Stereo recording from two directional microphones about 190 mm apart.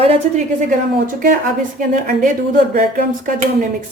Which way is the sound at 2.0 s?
45° right (ahead or behind).